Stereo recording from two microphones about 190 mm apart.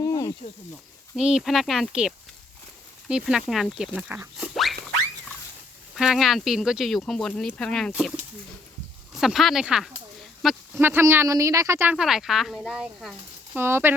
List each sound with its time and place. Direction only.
0.0 s snake: 15° left (ahead or behind)
1.1 s speech: 5° right (ahead or behind)
5.9 s speech: centre (ahead or behind)
9.1 s speech: centre (ahead or behind)
10.8 s speech: 10° right (ahead or behind)
13.6 s speech: 10° right (ahead or behind)